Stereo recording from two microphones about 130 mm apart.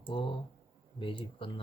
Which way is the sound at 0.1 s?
40° left (ahead or behind).